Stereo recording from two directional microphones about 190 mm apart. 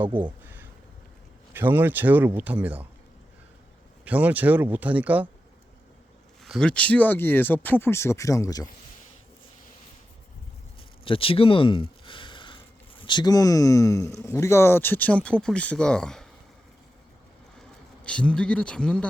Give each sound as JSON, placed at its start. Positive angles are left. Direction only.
{"t": 0.1, "sound": "speech", "side_deg": -25}
{"t": 0.4, "sound": "a sound", "side_deg": -10}
{"t": 1.5, "sound": "speech", "side_deg": -10}
{"t": 4.0, "sound": "speech", "side_deg": -10}
{"t": 6.4, "sound": "speech", "side_deg": 0}
{"t": 11.0, "sound": "a sound", "side_deg": 30}
{"t": 13.0, "sound": "speech", "side_deg": 25}
{"t": 18.0, "sound": "speech", "side_deg": 5}